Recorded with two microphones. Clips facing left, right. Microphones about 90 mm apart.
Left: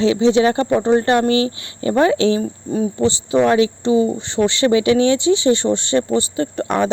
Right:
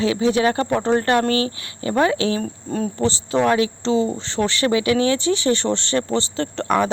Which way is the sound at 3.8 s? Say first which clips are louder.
Left 4 dB; 10° left (ahead or behind).